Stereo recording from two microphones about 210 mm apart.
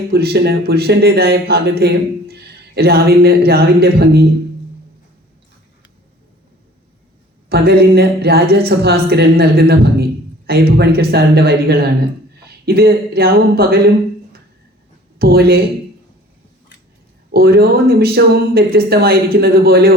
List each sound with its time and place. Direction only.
0.1 s speech: 50° right (ahead or behind)
7.5 s speech: 50° right (ahead or behind)
15.2 s speech: 50° right (ahead or behind)
17.3 s speech: 45° right (ahead or behind)